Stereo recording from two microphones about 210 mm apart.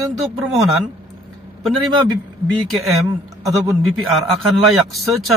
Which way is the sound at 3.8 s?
Centre (ahead or behind).